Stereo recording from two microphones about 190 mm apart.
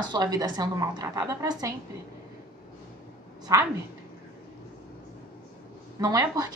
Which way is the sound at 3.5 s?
15° right (ahead or behind).